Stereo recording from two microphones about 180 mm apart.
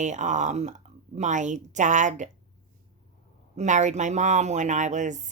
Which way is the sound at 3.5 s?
40° right (ahead or behind).